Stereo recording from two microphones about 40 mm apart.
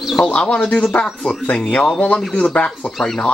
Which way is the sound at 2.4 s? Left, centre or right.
Left.